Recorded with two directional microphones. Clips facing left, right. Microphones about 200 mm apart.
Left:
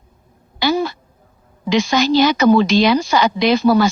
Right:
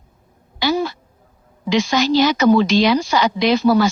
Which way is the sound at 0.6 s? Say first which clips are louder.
Left 1 dB; 55° left (ahead or behind).